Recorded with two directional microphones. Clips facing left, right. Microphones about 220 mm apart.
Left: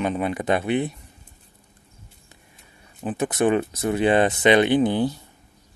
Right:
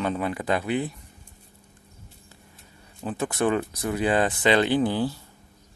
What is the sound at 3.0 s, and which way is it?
Speech, 20° left (ahead or behind).